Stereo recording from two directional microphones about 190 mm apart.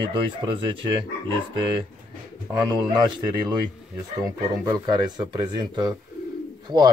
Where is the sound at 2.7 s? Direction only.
20° right (ahead or behind).